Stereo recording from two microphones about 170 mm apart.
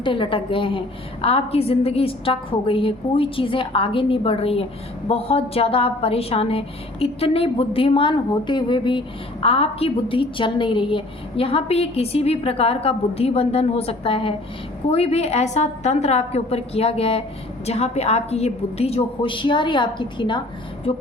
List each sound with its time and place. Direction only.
0.0 s a woman's voice: 30° left (ahead or behind)